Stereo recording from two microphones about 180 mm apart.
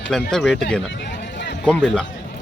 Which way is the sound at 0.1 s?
5° left (ahead or behind).